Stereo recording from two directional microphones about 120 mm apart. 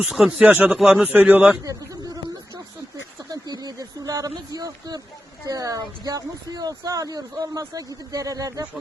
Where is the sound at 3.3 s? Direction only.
35° right (ahead or behind).